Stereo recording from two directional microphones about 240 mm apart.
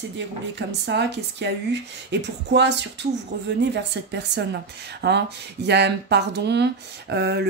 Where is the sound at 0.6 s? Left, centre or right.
Right.